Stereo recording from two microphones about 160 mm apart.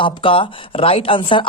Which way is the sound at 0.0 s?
35° left (ahead or behind).